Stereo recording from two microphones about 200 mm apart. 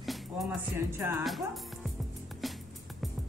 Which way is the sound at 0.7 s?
10° right (ahead or behind).